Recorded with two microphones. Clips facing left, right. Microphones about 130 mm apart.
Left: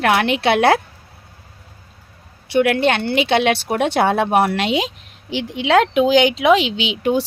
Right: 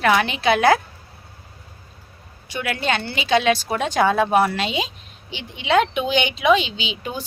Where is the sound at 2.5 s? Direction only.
70° left (ahead or behind).